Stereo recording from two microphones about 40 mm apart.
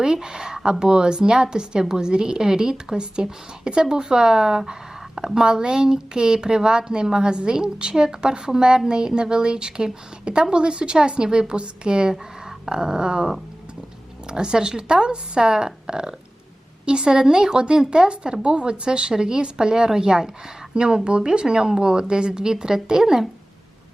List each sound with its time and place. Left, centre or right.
0.0 s speech: centre
12.6 s dog: centre
14.3 s speech: right